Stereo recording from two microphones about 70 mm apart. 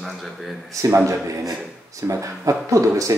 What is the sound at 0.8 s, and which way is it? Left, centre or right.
A man's voice, right.